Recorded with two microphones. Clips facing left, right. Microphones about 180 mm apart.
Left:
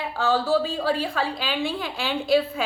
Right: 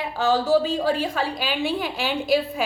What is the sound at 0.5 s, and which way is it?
A woman's voice, 20° right (ahead or behind).